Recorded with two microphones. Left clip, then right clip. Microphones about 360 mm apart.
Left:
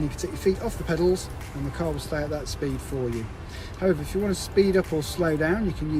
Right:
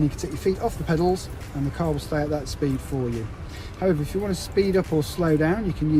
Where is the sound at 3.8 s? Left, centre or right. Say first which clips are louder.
Even; centre.